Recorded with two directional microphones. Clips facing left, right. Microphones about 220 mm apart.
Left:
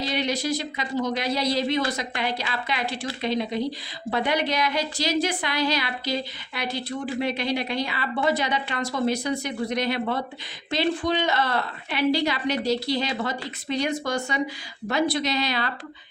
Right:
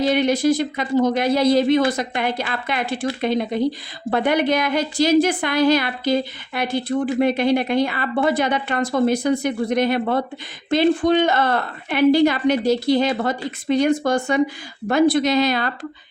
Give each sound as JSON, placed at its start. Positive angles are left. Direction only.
{"t": 0.0, "sound": "speech", "side_deg": -50}